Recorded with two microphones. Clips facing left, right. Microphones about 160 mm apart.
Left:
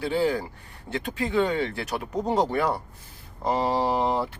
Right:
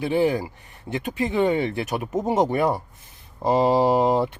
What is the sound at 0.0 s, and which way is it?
Speech, 20° right (ahead or behind).